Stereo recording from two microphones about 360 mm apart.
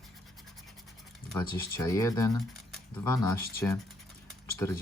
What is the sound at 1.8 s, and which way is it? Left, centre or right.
Speech, centre.